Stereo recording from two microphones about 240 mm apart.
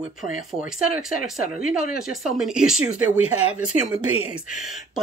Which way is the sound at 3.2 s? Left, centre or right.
Left.